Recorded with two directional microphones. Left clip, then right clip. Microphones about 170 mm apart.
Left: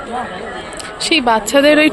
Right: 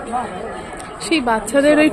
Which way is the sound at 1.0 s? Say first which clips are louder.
Left 5 dB; 10° left (ahead or behind).